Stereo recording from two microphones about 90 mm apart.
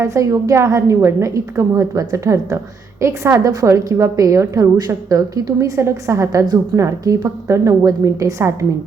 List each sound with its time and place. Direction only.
0.0 s a woman's voice: 35° right (ahead or behind)